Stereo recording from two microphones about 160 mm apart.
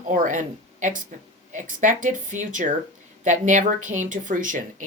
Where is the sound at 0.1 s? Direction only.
55° right (ahead or behind).